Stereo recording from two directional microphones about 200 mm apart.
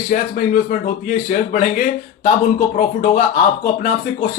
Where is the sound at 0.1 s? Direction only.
40° left (ahead or behind).